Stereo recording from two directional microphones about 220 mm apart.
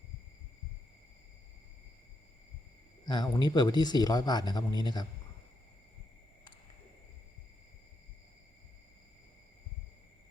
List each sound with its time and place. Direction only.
3.1 s speech: 20° left (ahead or behind)